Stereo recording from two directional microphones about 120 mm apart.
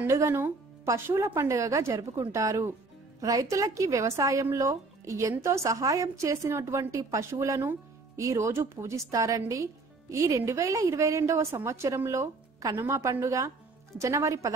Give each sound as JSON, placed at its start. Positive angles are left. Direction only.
{"t": 0.0, "sound": "a woman's voice", "side_deg": -25}